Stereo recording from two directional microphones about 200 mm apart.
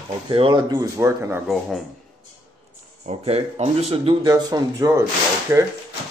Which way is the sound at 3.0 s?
30° right (ahead or behind).